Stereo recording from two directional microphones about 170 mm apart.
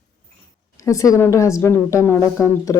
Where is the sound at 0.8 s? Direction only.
20° left (ahead or behind).